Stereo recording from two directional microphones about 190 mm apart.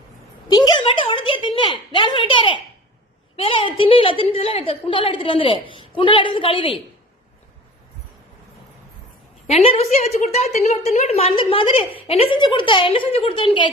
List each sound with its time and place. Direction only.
0.5 s a woman's voice: 20° left (ahead or behind)
9.5 s a woman's voice: 30° left (ahead or behind)